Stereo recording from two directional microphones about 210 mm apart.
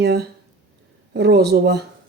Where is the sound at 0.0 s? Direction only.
50° right (ahead or behind).